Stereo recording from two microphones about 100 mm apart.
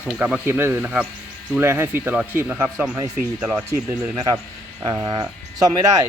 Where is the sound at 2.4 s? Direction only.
25° right (ahead or behind).